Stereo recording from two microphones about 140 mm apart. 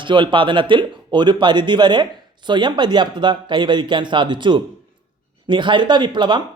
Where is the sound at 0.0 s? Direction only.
35° right (ahead or behind).